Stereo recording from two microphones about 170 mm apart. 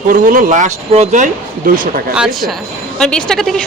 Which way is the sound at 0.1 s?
50° right (ahead or behind).